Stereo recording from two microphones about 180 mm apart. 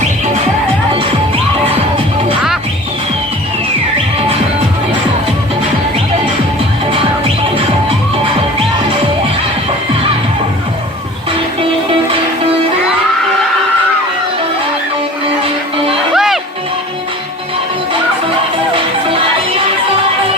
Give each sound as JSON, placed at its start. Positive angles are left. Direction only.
{"t": 16.1, "sound": "music", "side_deg": 0}